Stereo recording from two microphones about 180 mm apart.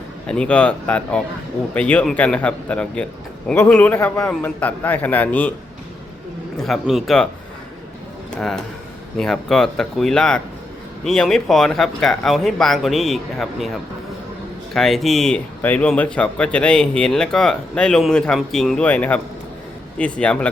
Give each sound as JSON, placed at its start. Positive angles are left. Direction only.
{"t": 0.3, "sound": "a man's voice", "side_deg": 5}
{"t": 6.6, "sound": "speech", "side_deg": 0}
{"t": 8.4, "sound": "speech", "side_deg": 5}
{"t": 14.7, "sound": "a man's voice", "side_deg": 0}